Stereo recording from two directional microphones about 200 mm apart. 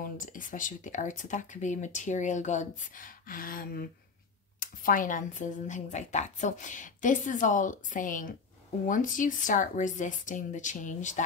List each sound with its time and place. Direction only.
0.0 s speech: 40° left (ahead or behind)